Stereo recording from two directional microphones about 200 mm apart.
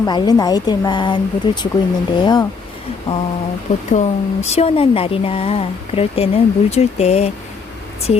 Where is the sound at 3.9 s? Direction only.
35° left (ahead or behind).